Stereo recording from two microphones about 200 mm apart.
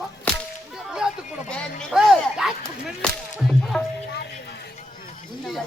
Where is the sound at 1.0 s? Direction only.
5° right (ahead or behind).